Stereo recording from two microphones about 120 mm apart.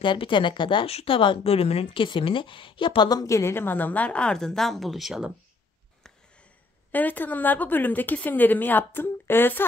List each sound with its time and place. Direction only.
0.0 s a woman's voice: 40° left (ahead or behind); by 5.3 s 5° right (ahead or behind)
6.9 s a woman's voice: 15° left (ahead or behind)